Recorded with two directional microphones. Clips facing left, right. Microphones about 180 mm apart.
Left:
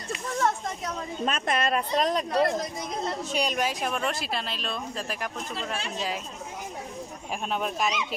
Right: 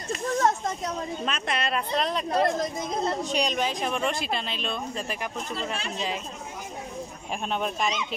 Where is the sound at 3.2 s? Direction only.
5° left (ahead or behind).